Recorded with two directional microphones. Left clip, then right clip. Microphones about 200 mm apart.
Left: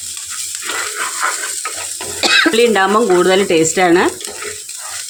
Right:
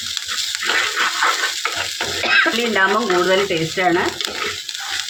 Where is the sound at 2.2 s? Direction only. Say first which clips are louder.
Left 5 dB; 80° left.